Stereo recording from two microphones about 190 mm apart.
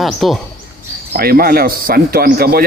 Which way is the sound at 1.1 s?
55° right (ahead or behind).